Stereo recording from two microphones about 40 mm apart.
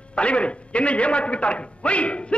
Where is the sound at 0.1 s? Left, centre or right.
Left.